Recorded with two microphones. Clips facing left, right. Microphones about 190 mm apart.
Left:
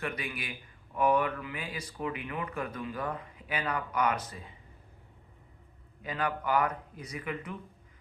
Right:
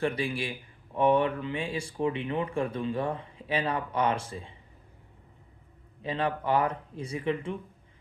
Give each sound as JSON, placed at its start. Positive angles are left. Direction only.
{"t": 0.0, "sound": "speech", "side_deg": -30}
{"t": 6.0, "sound": "speech", "side_deg": -30}